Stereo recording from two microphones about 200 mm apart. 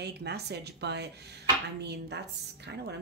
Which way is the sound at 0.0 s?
55° right (ahead or behind).